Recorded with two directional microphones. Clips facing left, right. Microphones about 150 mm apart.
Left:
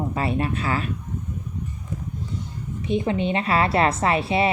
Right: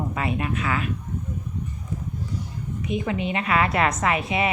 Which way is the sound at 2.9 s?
30° left (ahead or behind).